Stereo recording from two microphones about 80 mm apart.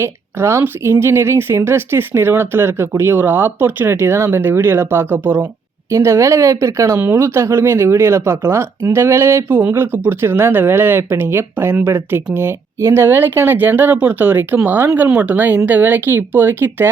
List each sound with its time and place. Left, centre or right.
0.0 s speech: right
5.9 s speech: right